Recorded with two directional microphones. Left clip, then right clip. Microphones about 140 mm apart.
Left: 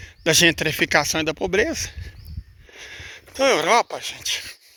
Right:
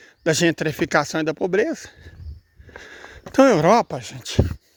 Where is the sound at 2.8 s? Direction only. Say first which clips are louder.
Left 3 dB; 50° right (ahead or behind).